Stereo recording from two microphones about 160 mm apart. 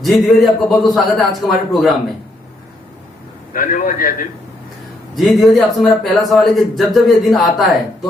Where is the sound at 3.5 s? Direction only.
60° left (ahead or behind).